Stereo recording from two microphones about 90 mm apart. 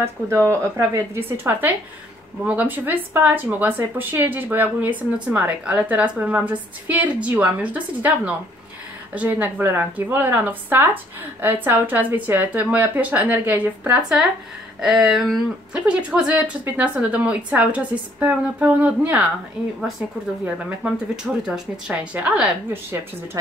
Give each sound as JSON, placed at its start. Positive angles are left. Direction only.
{"t": 0.3, "sound": "speech", "side_deg": -30}
{"t": 14.8, "sound": "a sound", "side_deg": -5}
{"t": 15.7, "sound": "speech", "side_deg": -10}
{"t": 20.4, "sound": "speech", "side_deg": -15}